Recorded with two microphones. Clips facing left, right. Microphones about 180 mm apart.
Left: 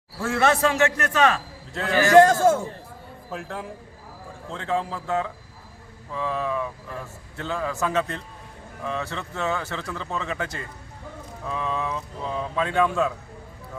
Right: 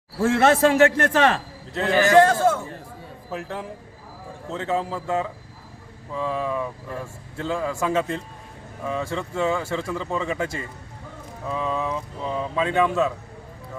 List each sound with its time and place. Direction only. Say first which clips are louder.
0.2 s a man's voice: right 4 dB; 30° right (ahead or behind)
2.2 s a man's voice: left 1 dB; 45° left (ahead or behind)
3.2 s speech: right 2 dB; centre (ahead or behind)